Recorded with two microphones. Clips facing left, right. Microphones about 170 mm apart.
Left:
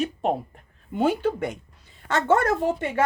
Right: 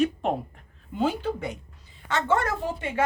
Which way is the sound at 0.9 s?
55° left (ahead or behind).